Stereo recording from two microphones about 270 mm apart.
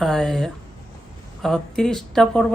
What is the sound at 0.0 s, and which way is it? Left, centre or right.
Speech, centre.